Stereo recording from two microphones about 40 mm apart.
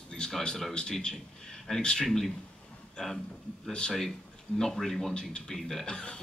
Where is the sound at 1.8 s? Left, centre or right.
Centre.